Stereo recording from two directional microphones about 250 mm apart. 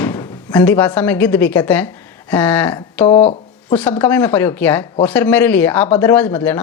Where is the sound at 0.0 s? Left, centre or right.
Centre.